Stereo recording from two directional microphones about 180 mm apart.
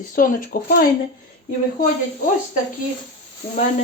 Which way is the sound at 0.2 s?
50° left (ahead or behind).